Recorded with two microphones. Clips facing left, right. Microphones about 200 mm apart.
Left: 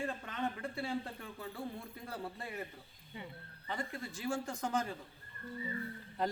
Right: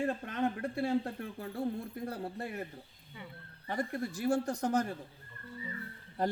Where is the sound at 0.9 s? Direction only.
55° right (ahead or behind).